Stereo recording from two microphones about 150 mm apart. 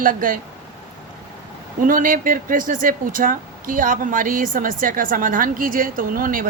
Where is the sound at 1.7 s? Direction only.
65° right (ahead or behind).